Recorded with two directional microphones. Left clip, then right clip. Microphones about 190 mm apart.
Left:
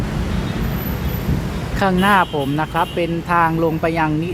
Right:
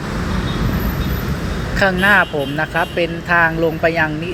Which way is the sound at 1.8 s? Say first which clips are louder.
Right 2 dB; 15° left (ahead or behind).